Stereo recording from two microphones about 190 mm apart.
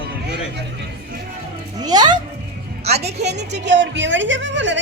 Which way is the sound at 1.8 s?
20° right (ahead or behind).